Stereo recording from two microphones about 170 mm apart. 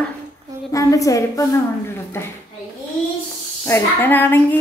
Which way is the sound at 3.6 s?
10° left (ahead or behind).